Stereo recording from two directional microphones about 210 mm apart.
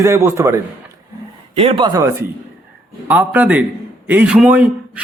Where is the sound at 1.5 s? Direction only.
25° right (ahead or behind).